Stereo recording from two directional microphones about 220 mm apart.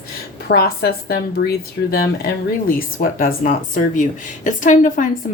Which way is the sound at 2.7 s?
40° left (ahead or behind).